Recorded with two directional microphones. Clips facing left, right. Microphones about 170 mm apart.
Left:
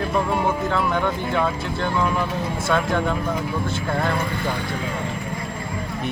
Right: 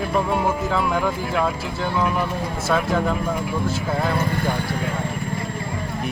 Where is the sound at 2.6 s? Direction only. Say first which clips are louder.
Right 1 dB; 5° right (ahead or behind).